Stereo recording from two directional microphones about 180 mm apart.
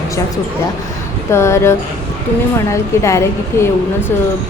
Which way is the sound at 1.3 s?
15° left (ahead or behind).